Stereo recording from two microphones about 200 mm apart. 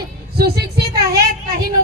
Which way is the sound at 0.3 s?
50° right (ahead or behind).